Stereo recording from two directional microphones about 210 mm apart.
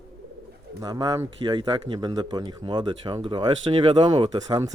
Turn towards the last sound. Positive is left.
turn(degrees=-20)  # may be behind; listen again after turning